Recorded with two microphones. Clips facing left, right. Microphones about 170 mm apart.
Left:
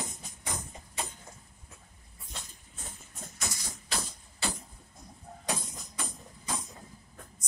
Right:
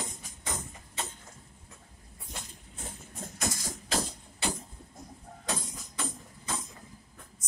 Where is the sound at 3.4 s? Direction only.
45° right (ahead or behind).